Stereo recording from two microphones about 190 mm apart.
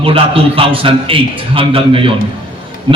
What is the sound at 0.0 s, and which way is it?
A man's voice, 30° right (ahead or behind).